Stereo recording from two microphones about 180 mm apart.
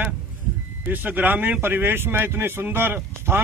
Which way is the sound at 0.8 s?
10° right (ahead or behind).